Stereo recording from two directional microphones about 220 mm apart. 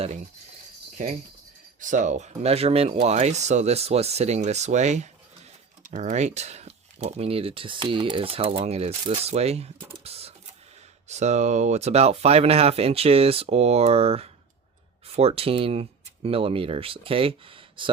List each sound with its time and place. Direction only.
1.8 s speech: 35° right (ahead or behind)